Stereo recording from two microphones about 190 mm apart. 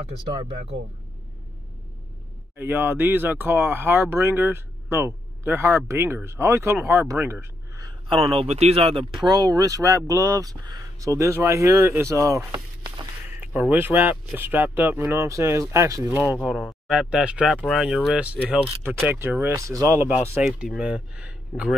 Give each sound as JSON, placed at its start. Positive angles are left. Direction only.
{"t": 0.4, "sound": "speech", "side_deg": -30}
{"t": 2.5, "sound": "speech", "side_deg": -10}
{"t": 16.4, "sound": "speech", "side_deg": 0}
{"t": 20.4, "sound": "speech", "side_deg": 0}